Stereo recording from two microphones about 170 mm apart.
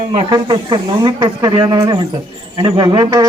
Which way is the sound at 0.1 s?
30° right (ahead or behind).